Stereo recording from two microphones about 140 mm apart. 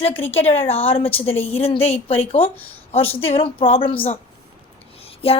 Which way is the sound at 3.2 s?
40° left (ahead or behind).